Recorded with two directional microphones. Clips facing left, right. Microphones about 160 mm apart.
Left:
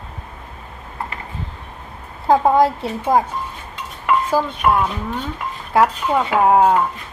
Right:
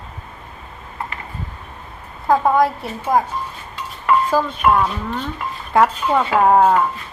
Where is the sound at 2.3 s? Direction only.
30° left (ahead or behind).